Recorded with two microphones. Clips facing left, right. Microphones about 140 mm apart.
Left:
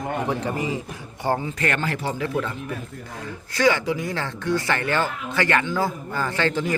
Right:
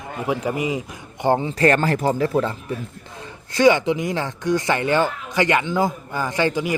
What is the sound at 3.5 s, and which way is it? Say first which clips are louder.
Speech: right 5 dB; 20° right (ahead or behind).